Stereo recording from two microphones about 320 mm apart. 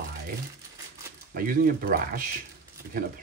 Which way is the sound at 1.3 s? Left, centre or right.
Right.